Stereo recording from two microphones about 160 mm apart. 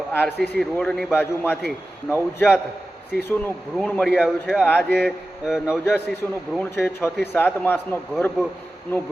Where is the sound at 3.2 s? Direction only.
10° left (ahead or behind).